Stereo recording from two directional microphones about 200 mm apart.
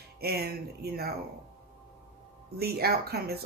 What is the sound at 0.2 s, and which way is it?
Speech, 50° right (ahead or behind).